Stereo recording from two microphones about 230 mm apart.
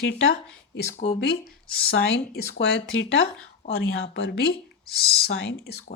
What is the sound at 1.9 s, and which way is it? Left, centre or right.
Speech, left.